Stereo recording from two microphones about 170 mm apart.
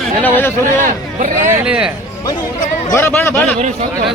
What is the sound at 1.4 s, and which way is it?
Speech, 10° right (ahead or behind).